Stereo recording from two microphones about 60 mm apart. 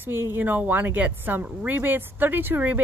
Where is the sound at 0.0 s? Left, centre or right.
Right.